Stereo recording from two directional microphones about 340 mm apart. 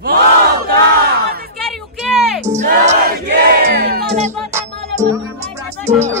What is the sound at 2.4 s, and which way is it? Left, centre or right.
Choir, right.